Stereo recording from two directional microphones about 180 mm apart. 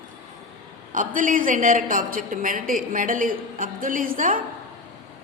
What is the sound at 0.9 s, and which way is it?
A woman's voice, 45° right (ahead or behind).